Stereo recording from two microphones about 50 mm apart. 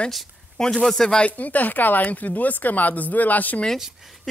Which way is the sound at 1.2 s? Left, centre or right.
Left.